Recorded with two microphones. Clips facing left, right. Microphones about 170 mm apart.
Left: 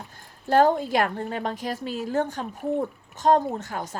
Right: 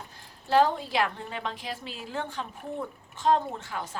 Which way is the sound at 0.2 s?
50° left (ahead or behind).